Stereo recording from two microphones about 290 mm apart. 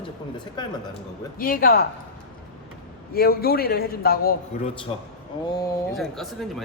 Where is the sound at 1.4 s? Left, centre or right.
Left.